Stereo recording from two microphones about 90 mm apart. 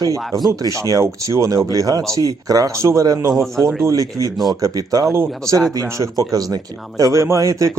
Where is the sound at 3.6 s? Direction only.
5° left (ahead or behind).